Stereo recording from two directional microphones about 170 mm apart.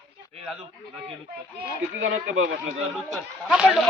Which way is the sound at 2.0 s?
90° right.